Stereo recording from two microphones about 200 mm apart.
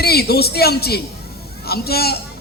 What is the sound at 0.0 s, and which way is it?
A man's voice, 50° left (ahead or behind).